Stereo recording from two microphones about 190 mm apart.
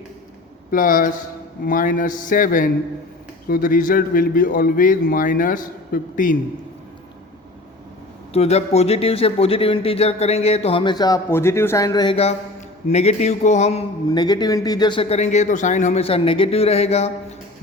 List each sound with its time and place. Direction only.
0.7 s a man's voice: 45° left (ahead or behind)
8.3 s speech: 35° left (ahead or behind)
12.9 s speech: 35° left (ahead or behind)
14.1 s speech: 20° left (ahead or behind)